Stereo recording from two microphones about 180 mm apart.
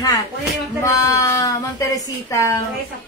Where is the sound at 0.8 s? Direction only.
20° left (ahead or behind).